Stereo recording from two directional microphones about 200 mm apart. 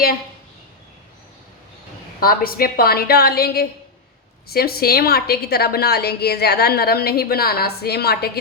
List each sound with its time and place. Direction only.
2.2 s a woman's voice: 45° left (ahead or behind)